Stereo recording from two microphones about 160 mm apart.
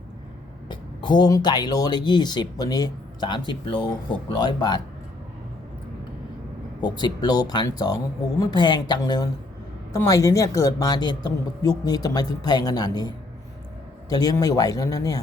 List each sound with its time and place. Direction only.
0.7 s speech: 30° left (ahead or behind)
6.8 s speech: 25° left (ahead or behind)